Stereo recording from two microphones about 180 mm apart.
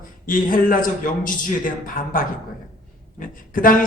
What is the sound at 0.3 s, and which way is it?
A man's voice, 50° left (ahead or behind).